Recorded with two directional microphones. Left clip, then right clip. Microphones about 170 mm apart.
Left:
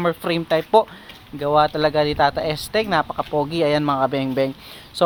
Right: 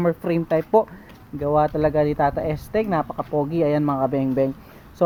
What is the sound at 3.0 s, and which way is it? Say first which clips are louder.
Speech: left 2 dB; 20° left (ahead or behind).